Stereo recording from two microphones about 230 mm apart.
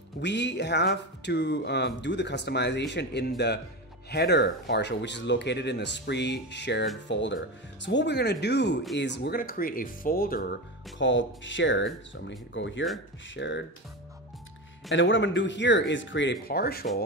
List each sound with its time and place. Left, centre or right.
0.2 s speech: left
14.9 s speech: left